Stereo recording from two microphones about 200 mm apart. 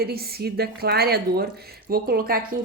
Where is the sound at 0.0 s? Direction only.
50° right (ahead or behind).